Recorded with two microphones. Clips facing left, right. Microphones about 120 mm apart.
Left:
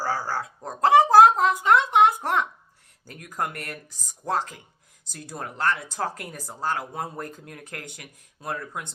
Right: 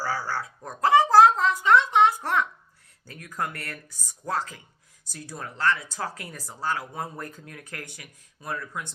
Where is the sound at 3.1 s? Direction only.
15° left (ahead or behind).